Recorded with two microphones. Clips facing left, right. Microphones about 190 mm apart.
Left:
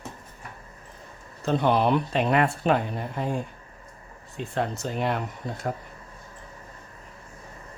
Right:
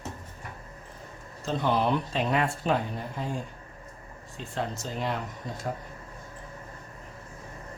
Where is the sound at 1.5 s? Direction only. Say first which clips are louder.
Left 4 dB; 60° left (ahead or behind).